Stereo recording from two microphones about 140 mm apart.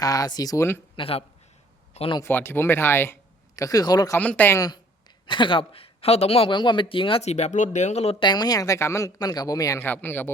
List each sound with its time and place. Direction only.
0.0 s speech: 25° left (ahead or behind)
0.9 s speech: 40° left (ahead or behind)
1.9 s a sound: 45° left (ahead or behind)
2.2 s speech: 15° left (ahead or behind)
4.2 s speech: 10° left (ahead or behind)
5.2 s speech: 35° left (ahead or behind); by 8.1 s 55° left (ahead or behind)
8.2 s speech: 30° left (ahead or behind); by 10.3 s 15° left (ahead or behind)